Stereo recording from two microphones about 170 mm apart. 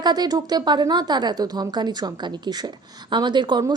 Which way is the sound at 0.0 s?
25° right (ahead or behind).